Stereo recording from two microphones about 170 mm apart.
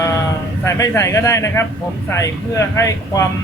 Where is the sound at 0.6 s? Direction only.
15° left (ahead or behind).